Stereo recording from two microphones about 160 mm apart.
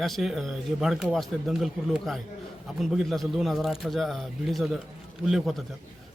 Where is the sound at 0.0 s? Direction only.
Centre (ahead or behind).